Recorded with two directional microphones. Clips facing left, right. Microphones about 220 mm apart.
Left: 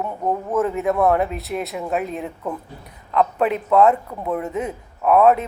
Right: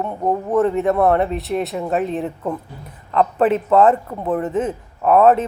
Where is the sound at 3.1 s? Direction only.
Centre (ahead or behind).